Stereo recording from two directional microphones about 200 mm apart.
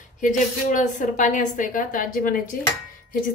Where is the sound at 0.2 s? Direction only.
40° left (ahead or behind).